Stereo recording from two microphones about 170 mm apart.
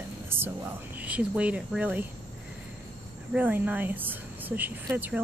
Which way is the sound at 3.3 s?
10° right (ahead or behind).